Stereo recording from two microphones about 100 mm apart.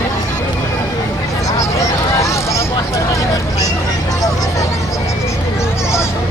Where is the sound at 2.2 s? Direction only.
30° left (ahead or behind).